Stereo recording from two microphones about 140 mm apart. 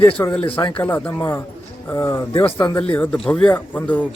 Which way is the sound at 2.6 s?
10° left (ahead or behind).